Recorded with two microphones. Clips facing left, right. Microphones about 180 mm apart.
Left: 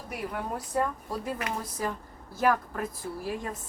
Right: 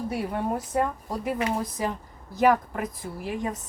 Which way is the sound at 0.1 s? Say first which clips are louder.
Right 2 dB; 25° right (ahead or behind).